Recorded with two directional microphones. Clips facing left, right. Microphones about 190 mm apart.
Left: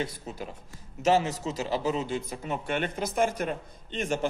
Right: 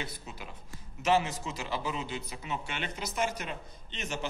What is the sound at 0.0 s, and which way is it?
A man's voice, 45° left (ahead or behind).